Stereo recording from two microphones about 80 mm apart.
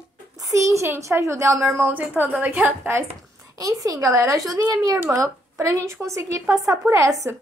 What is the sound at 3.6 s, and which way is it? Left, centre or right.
Speech, right.